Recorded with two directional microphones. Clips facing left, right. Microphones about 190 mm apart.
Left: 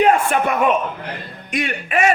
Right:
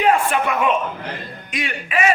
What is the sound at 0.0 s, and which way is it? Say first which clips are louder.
Speech: left 2 dB; 45° left (ahead or behind).